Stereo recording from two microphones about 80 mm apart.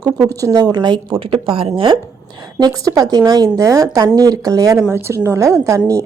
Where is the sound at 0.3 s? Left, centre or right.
Right.